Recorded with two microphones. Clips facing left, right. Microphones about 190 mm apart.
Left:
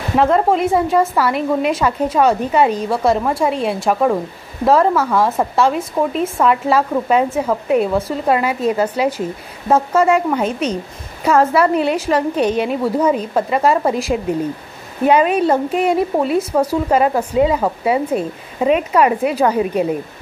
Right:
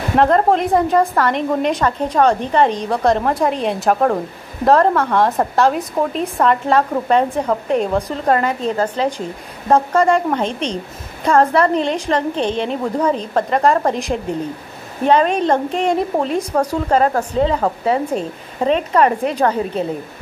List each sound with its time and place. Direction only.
0.2 s a woman's voice: 5° left (ahead or behind)